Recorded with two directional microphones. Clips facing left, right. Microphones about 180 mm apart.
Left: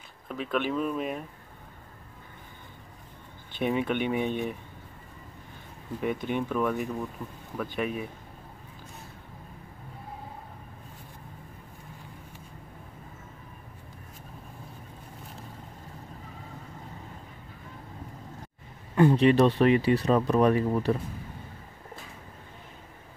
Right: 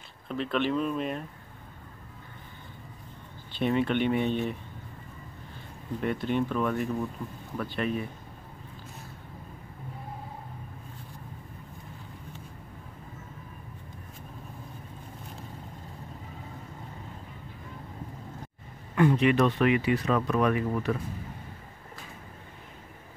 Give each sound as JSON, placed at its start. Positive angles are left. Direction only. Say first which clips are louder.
{"t": 0.3, "sound": "speech", "louder": "right 1 dB", "side_deg": 5}
{"t": 3.6, "sound": "speech", "louder": "right 1 dB", "side_deg": 10}
{"t": 5.9, "sound": "speech", "louder": "right 1 dB", "side_deg": 10}
{"t": 18.9, "sound": "speech", "louder": "left 3 dB", "side_deg": 30}